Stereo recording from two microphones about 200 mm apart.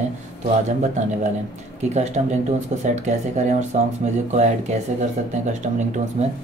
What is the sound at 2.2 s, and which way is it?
Speech, 35° right (ahead or behind).